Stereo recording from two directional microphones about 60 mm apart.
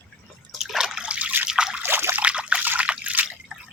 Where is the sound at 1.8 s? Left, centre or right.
Right.